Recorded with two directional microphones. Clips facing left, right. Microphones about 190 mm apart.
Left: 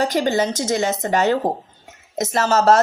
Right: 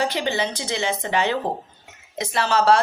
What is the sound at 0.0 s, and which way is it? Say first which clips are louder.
Speech: left 5 dB; 45° left (ahead or behind).